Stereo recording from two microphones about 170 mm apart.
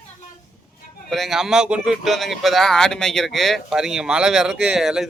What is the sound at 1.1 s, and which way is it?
Speech, centre (ahead or behind).